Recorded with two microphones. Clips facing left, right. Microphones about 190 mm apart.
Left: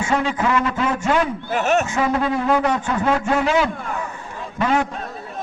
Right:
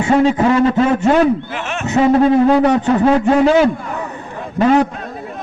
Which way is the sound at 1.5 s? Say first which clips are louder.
Left 5 dB; 40° left (ahead or behind).